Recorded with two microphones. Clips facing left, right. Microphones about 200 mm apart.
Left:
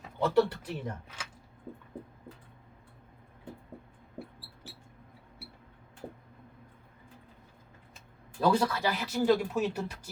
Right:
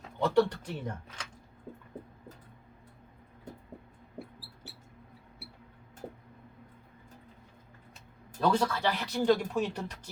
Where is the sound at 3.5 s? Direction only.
40° right (ahead or behind).